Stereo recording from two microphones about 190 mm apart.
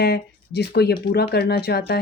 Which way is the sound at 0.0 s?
60° left (ahead or behind).